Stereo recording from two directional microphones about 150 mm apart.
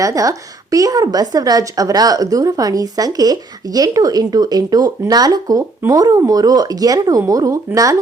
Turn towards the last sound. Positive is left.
turn(degrees=-20)  # may be behind; listen again after turning